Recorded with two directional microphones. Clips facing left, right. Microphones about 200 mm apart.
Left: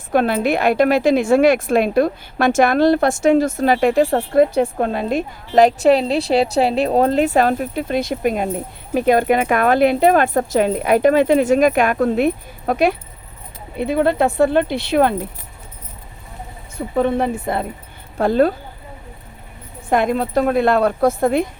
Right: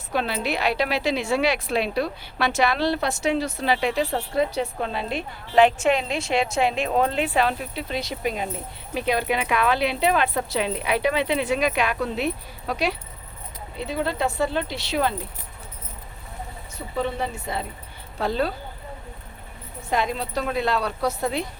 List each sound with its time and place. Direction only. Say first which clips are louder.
0.1 s a woman's voice: left 9 dB; 50° left (ahead or behind)
16.7 s a woman's voice: left 9 dB; 55° left (ahead or behind)
19.9 s a woman's voice: left 8 dB; 55° left (ahead or behind)